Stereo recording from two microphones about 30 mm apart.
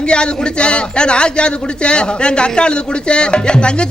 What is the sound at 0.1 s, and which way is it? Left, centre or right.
A man's voice, left.